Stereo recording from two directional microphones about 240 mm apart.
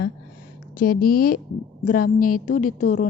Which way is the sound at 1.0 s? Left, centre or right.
Left.